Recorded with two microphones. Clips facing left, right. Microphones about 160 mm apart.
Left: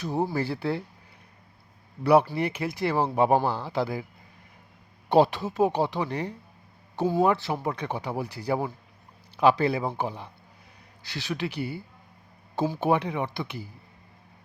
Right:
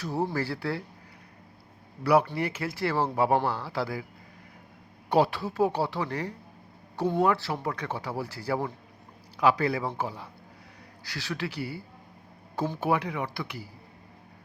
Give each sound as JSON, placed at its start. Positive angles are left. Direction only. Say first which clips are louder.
{"t": 0.0, "sound": "speech", "louder": "left 2 dB", "side_deg": 20}
{"t": 2.0, "sound": "speech", "louder": "left 3 dB", "side_deg": 25}
{"t": 5.0, "sound": "speech", "louder": "left 3 dB", "side_deg": 25}
{"t": 12.8, "sound": "speech", "louder": "left 2 dB", "side_deg": 25}